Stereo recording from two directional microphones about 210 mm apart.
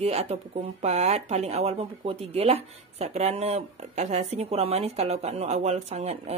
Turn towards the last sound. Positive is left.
turn(degrees=-30)  # may be behind; listen again after turning